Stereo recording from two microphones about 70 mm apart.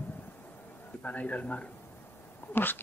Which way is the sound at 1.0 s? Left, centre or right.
Centre.